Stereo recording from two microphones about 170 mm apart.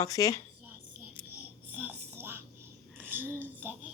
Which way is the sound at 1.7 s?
10° right (ahead or behind).